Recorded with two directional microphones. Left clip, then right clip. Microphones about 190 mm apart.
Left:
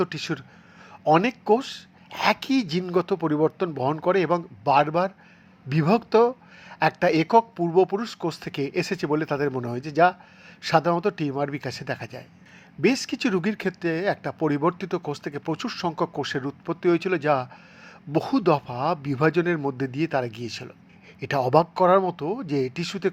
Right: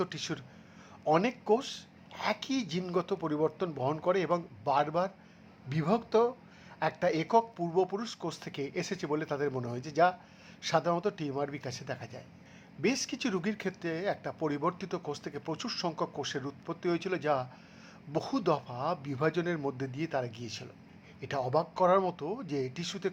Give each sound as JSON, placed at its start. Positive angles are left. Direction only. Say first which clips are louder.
{"t": 0.0, "sound": "speech", "louder": "left 8 dB", "side_deg": 20}